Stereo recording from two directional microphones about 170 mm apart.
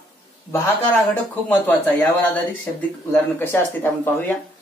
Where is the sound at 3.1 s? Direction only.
10° left (ahead or behind).